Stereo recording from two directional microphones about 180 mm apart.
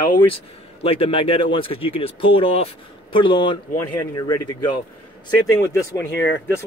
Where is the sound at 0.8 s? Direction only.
30° left (ahead or behind).